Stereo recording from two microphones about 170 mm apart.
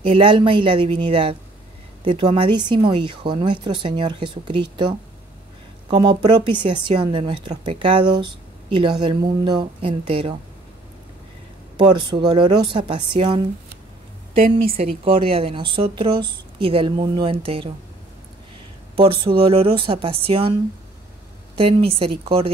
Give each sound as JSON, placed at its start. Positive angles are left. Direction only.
{"t": 0.0, "sound": "a woman's voice", "side_deg": -30}
{"t": 11.7, "sound": "a woman's voice", "side_deg": -25}
{"t": 14.8, "sound": "a woman's voice", "side_deg": -35}
{"t": 18.9, "sound": "a woman's voice", "side_deg": -30}
{"t": 21.5, "sound": "a woman's voice", "side_deg": -35}